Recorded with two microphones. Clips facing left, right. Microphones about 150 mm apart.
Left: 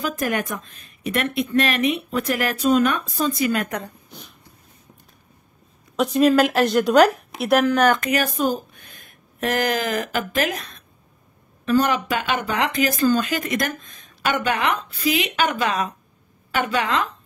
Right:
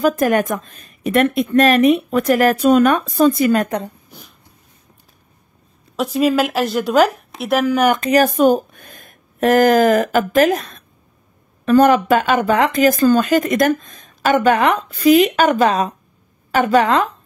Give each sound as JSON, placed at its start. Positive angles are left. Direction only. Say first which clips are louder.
{"t": 0.0, "sound": "speech", "louder": "right 9 dB", "side_deg": -45}
{"t": 4.1, "sound": "a sound", "louder": "even", "side_deg": 0}
{"t": 5.9, "sound": "a woman's voice", "louder": "even", "side_deg": -5}
{"t": 8.3, "sound": "speech", "louder": "right 9 dB", "side_deg": -60}